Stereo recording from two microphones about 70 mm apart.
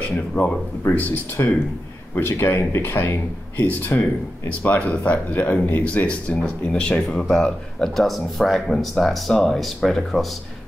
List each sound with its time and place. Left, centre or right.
0.0 s speech: centre